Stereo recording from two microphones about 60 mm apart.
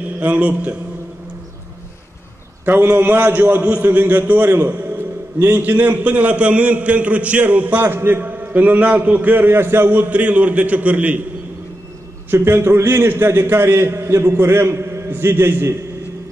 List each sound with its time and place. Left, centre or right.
0.2 s a man's voice: right
2.6 s a man's voice: right
7.8 s a man's voice: right
9.8 s a man's voice: right
12.3 s a man's voice: right